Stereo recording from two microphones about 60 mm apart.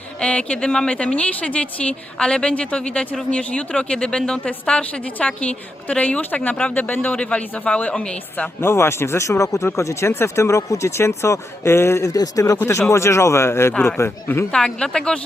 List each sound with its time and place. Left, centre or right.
0.2 s a woman's voice: centre
8.6 s speech: left
12.1 s speech: left
12.5 s speech: left
14.5 s a woman's voice: centre